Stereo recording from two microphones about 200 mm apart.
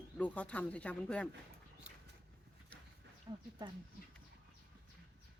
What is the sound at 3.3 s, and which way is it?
Speech, 20° right (ahead or behind).